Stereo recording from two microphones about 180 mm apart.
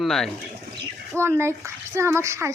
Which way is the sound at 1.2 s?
15° right (ahead or behind).